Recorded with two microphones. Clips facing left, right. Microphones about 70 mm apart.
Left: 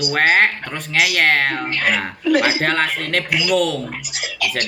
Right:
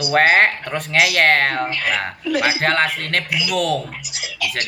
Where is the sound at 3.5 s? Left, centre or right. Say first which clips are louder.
Left 1 dB; centre.